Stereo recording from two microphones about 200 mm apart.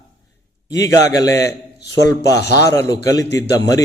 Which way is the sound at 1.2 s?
15° left (ahead or behind).